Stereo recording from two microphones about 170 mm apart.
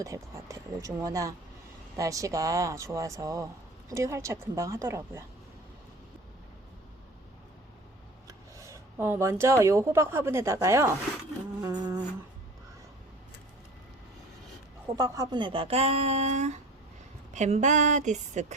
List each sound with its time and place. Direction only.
0.0 s a woman's voice: 20° right (ahead or behind)
8.3 s speech: 15° right (ahead or behind)
11.8 s humming: 20° right (ahead or behind)
14.9 s speech: 20° right (ahead or behind); by 18.5 s 45° right (ahead or behind)